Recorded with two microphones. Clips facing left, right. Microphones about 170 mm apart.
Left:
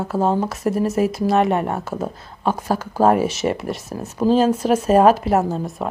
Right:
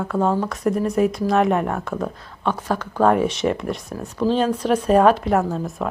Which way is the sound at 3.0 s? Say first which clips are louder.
Left 1 dB; 5° left (ahead or behind).